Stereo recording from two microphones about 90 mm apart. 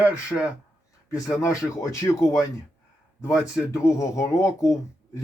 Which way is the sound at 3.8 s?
35° left (ahead or behind).